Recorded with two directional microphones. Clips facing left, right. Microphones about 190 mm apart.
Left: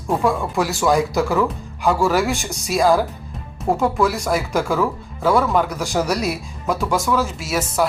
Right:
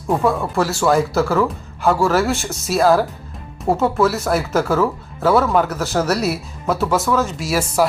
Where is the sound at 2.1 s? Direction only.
15° left (ahead or behind).